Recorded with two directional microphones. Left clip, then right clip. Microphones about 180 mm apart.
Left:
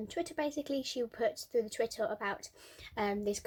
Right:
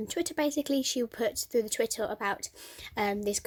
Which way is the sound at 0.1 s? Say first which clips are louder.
Right 6 dB; 50° right (ahead or behind).